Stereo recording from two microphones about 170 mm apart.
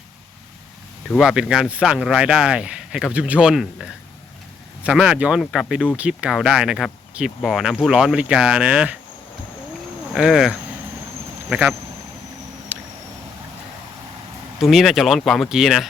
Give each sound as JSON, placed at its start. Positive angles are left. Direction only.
{"t": 1.1, "sound": "speech", "side_deg": 0}
{"t": 10.1, "sound": "speech", "side_deg": 0}
{"t": 12.7, "sound": "a sound", "side_deg": -10}
{"t": 14.6, "sound": "speech", "side_deg": 0}